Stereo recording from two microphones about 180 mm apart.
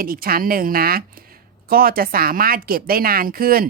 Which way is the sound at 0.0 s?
55° right (ahead or behind).